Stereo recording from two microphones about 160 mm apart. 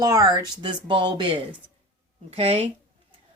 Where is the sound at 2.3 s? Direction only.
40° right (ahead or behind).